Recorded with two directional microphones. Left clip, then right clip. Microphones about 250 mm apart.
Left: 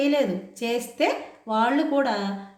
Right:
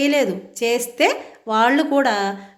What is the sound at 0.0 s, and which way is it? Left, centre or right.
A woman's voice, right.